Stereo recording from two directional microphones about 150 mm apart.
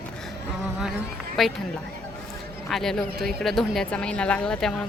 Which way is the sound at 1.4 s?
Centre (ahead or behind).